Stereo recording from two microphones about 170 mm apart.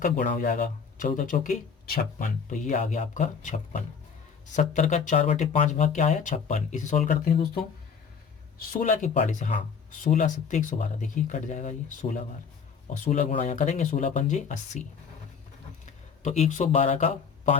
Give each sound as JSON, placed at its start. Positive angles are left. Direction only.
{"t": 0.0, "sound": "speech", "side_deg": 50}
{"t": 8.7, "sound": "speech", "side_deg": 45}
{"t": 16.2, "sound": "speech", "side_deg": 45}